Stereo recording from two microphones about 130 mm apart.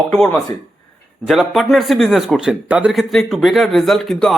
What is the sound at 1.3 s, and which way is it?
Speech, centre (ahead or behind).